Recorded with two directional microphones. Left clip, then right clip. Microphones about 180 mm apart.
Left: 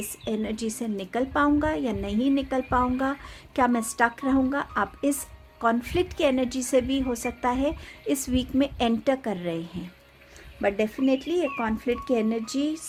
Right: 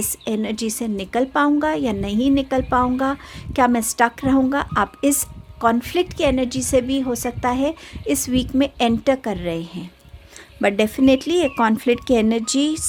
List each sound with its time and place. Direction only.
0.3 s a woman's voice: 35° right (ahead or behind)
10.6 s speech: 45° right (ahead or behind)